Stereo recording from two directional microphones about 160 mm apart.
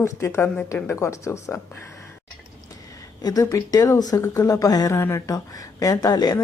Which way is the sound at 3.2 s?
25° left (ahead or behind).